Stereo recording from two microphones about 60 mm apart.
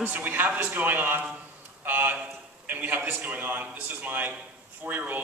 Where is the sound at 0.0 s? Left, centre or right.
Right.